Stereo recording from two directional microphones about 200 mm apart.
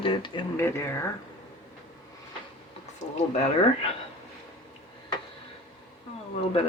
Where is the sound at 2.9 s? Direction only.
35° left (ahead or behind).